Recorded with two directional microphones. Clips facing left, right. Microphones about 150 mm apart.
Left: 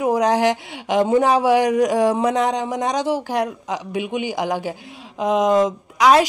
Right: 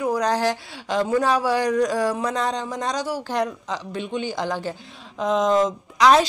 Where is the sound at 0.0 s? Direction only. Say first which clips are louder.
Left 4 dB; 20° left (ahead or behind).